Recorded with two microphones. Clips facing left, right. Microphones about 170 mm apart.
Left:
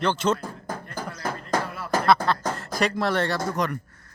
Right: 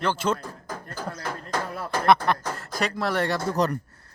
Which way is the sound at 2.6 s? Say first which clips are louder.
Left 3 dB; centre (ahead or behind).